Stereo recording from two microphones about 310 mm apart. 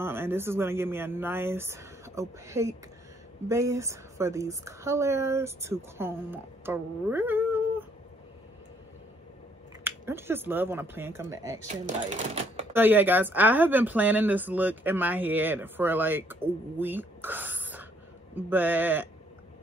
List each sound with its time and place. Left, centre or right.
0.0 s a woman's voice: centre
9.8 s a woman's voice: centre
11.6 s speech: right
12.7 s speech: centre